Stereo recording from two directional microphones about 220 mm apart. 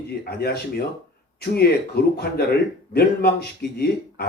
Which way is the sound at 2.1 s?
45° left (ahead or behind).